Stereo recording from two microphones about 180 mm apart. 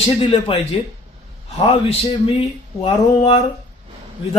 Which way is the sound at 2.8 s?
30° left (ahead or behind).